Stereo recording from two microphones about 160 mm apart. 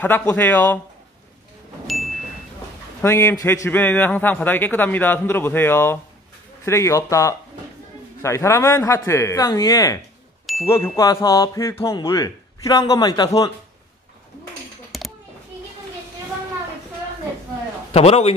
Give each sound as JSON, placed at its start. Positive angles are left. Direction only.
{"t": 0.0, "sound": "a man's voice", "side_deg": 10}
{"t": 3.0, "sound": "a man's voice", "side_deg": 15}
{"t": 14.9, "sound": "a sound", "side_deg": 0}
{"t": 17.9, "sound": "speech", "side_deg": 40}